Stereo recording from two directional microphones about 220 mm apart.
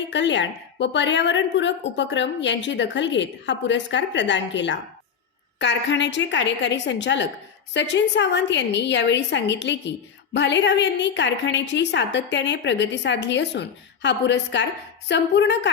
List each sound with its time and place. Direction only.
0.1 s a woman's voice: 55° left (ahead or behind)